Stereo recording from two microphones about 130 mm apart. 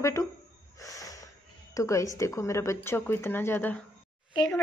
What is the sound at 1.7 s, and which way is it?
A child's voice, 25° left (ahead or behind).